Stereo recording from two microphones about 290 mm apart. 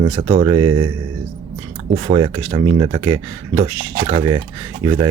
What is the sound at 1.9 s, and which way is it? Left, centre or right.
Speech, centre.